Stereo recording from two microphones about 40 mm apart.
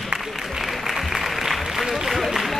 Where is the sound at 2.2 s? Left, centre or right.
Centre.